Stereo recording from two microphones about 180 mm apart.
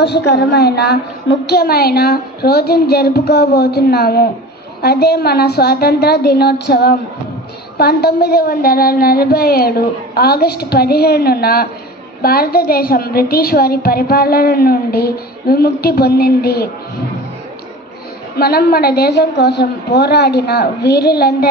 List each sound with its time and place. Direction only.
0.0 s a woman's voice: 65° left (ahead or behind)
18.3 s a woman's voice: 60° left (ahead or behind)